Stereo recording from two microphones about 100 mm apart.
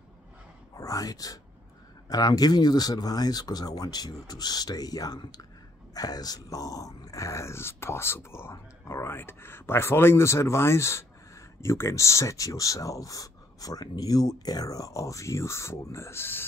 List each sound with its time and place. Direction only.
0.7 s speech: 35° left (ahead or behind)